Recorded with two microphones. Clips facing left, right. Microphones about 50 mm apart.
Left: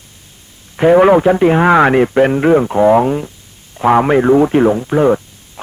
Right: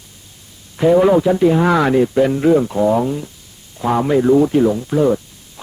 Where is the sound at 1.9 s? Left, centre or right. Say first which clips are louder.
Left 3 dB; left.